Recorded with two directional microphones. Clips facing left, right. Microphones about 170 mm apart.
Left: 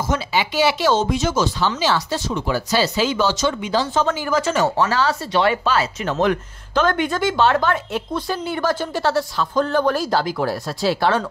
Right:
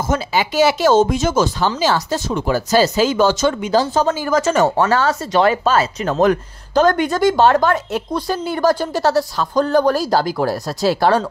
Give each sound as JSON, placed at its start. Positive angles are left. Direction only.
{"t": 0.1, "sound": "speech", "side_deg": -45}